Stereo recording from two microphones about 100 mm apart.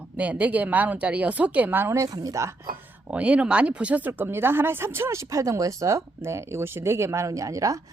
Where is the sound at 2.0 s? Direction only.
35° right (ahead or behind).